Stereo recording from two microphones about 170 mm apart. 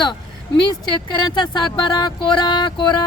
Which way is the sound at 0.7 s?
25° left (ahead or behind).